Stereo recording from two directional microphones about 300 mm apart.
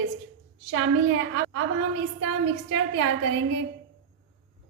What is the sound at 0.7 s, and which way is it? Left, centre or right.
A woman's voice, right.